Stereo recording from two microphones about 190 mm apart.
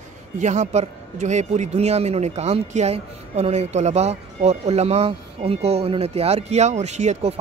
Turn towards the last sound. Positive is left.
turn(degrees=-35)  # may be behind; listen again after turning